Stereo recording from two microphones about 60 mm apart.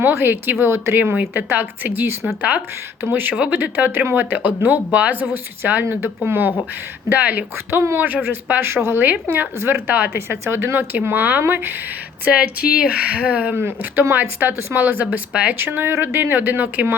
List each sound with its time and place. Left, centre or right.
0.0 s speech: right
0.6 s speech: right
0.9 s speech: right
3.3 s speech: centre
7.7 s speech: right
12.8 s speech: centre
13.6 s speech: right
15.5 s speech: right